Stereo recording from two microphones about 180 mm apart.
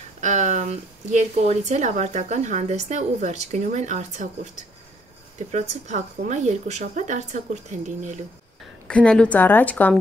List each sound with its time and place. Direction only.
0.2 s a woman's voice: 40° right (ahead or behind)
5.5 s a woman's voice: 40° right (ahead or behind)
8.8 s a woman's voice: 5° left (ahead or behind)